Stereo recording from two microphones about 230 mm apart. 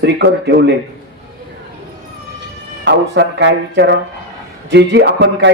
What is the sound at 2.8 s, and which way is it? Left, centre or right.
A man's voice, right.